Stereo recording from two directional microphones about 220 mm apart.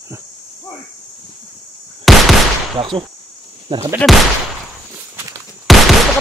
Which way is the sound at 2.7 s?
25° right (ahead or behind).